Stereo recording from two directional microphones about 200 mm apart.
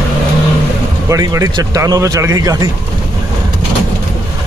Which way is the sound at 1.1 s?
15° right (ahead or behind).